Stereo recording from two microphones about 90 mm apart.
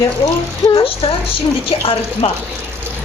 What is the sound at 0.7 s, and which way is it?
A woman's voice, 85° left.